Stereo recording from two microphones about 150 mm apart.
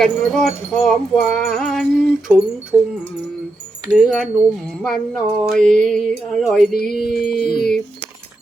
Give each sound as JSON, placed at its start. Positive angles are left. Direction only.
{"t": 0.0, "sound": "wind chime", "side_deg": 0}
{"t": 2.7, "sound": "a sound", "side_deg": -25}
{"t": 3.9, "sound": "wind chime", "side_deg": 0}